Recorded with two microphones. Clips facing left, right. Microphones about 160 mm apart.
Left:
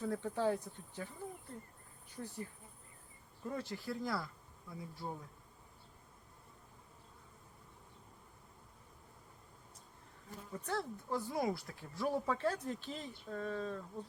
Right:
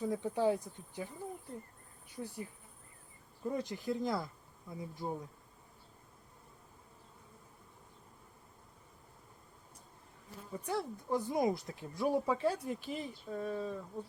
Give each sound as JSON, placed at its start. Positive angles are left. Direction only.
{"t": 0.0, "sound": "speech", "side_deg": -15}
{"t": 2.1, "sound": "speech", "side_deg": -10}
{"t": 3.5, "sound": "speech", "side_deg": -15}
{"t": 10.5, "sound": "speech", "side_deg": -10}